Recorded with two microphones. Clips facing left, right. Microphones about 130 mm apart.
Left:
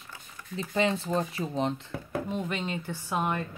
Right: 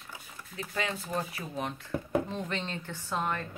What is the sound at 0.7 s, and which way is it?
Speech, 25° left (ahead or behind).